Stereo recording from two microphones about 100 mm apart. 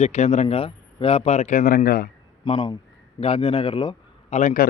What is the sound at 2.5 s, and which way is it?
Speech, 50° left (ahead or behind).